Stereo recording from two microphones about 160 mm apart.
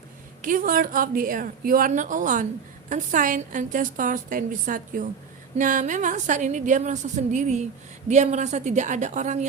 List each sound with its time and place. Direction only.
0.4 s a woman's voice: 55° right (ahead or behind)